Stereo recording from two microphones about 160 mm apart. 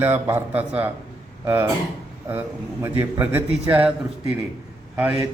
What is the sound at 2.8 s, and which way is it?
A man's voice, 15° right (ahead or behind).